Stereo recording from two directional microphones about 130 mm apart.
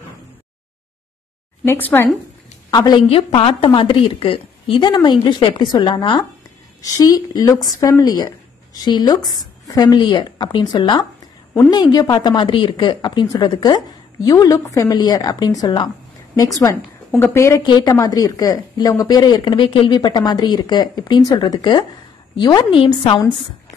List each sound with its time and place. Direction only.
1.6 s speech: 15° left (ahead or behind)
2.7 s speech: 35° left (ahead or behind)
17.6 s speech: 35° left (ahead or behind)